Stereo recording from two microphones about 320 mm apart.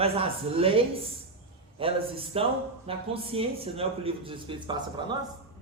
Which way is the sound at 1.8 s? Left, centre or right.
Centre.